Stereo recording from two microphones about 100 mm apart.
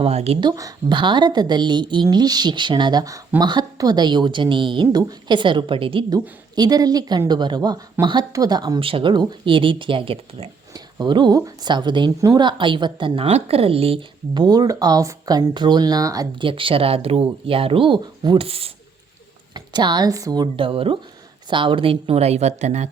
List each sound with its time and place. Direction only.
0.0 s speech: 90° right
0.9 s a woman's voice: 50° right (ahead or behind)
6.1 s speech: 40° right (ahead or behind)
8.0 s speech: 20° right (ahead or behind)
8.3 s speech: 40° right (ahead or behind)
8.8 s speech: 65° right (ahead or behind)
11.0 s a woman's voice: 50° right (ahead or behind); by 14.0 s 70° right (ahead or behind)
14.3 s speech: 45° right (ahead or behind)
16.4 s speech: 60° right (ahead or behind)
18.3 s a woman's voice: 75° right (ahead or behind)
19.5 s a woman's voice: 45° right (ahead or behind)
20.6 s a woman's voice: 65° right (ahead or behind); by 22.7 s 90° right